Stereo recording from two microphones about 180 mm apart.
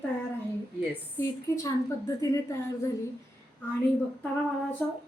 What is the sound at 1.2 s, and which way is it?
A woman's voice, 15° left (ahead or behind).